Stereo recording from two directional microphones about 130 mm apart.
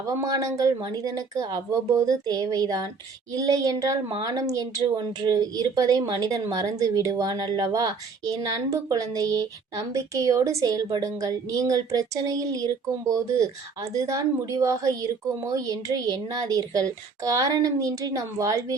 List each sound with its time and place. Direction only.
0.1 s a woman's voice: 25° right (ahead or behind)